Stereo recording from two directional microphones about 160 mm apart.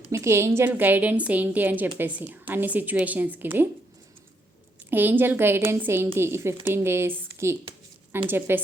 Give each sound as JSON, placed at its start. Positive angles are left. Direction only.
{"t": 0.1, "sound": "a woman's voice", "side_deg": -15}
{"t": 4.9, "sound": "a woman's voice", "side_deg": -10}